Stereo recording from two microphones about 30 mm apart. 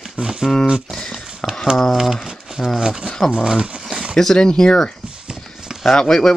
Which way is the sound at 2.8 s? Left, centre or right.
Right.